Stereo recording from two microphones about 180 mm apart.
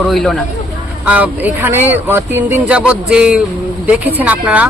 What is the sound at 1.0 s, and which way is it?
Speech, 10° right (ahead or behind).